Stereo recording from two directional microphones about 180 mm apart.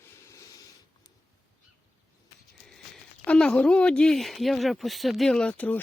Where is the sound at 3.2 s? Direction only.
5° left (ahead or behind).